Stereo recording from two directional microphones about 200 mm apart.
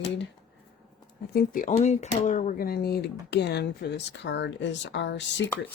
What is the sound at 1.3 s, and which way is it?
Speech, 45° left (ahead or behind).